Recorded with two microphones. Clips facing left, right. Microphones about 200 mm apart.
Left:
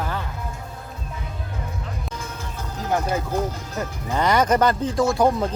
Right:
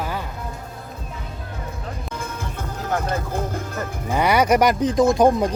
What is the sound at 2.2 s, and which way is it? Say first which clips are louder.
Music: right 3 dB; 55° right (ahead or behind).